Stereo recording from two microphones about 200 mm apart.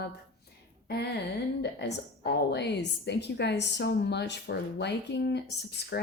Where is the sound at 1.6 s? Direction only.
60° left (ahead or behind).